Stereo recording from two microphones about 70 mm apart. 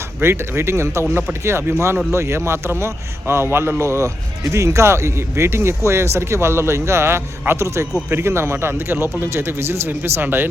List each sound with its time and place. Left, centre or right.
0.2 s a man's voice: right